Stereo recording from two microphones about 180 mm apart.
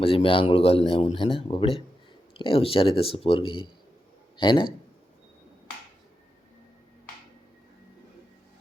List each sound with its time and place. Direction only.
0.0 s a man's voice: 30° left (ahead or behind)